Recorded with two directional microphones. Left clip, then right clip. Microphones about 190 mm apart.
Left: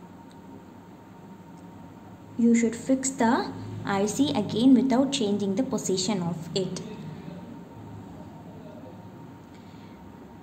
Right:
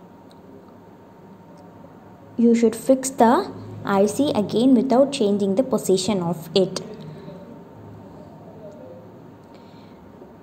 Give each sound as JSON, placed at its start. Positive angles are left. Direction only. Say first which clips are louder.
{"t": 2.3, "sound": "a woman's voice", "louder": "right 6 dB", "side_deg": -25}